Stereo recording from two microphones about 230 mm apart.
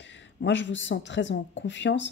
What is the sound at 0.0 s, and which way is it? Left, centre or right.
Speech, left.